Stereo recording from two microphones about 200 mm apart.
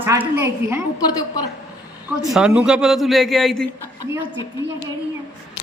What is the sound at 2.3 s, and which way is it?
A man's voice, 5° right (ahead or behind).